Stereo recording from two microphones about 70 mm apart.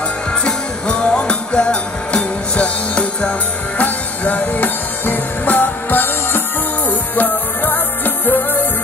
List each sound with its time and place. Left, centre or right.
0.3 s music: centre